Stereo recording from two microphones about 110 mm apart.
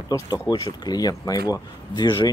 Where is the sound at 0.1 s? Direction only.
40° left (ahead or behind).